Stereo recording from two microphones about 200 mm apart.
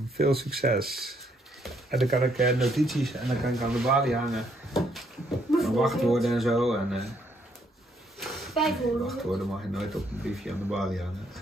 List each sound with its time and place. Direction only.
0.2 s speech: 50° right (ahead or behind)
0.8 s speech: centre (ahead or behind)
8.2 s speech: centre (ahead or behind)